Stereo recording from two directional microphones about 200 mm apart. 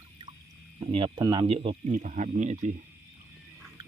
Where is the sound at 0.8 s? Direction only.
25° right (ahead or behind).